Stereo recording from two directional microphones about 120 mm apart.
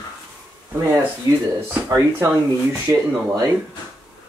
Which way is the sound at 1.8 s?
25° right (ahead or behind).